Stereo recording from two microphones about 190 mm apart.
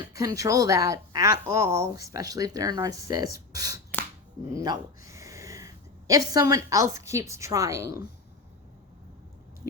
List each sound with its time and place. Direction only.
0.1 s a woman's voice: 15° right (ahead or behind)